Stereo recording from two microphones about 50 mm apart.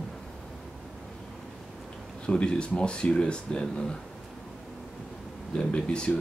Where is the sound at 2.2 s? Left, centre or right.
Centre.